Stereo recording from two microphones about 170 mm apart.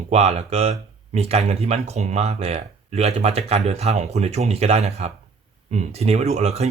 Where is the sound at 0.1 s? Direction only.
40° right (ahead or behind).